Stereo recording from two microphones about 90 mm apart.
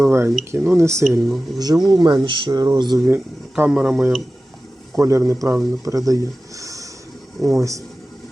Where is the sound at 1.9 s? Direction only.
55° right (ahead or behind).